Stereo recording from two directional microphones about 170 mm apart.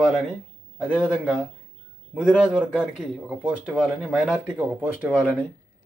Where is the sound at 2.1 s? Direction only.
5° right (ahead or behind).